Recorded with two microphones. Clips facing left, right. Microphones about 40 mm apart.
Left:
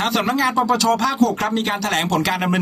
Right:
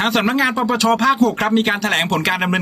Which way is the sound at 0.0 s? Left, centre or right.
Right.